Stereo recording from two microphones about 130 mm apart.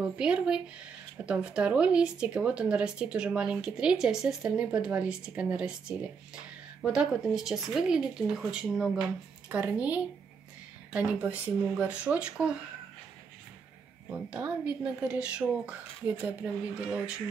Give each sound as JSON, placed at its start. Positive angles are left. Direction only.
{"t": 0.0, "sound": "speech", "side_deg": -5}
{"t": 14.1, "sound": "speech", "side_deg": -10}